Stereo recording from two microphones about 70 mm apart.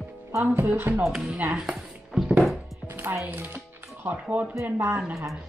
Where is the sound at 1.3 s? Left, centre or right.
Right.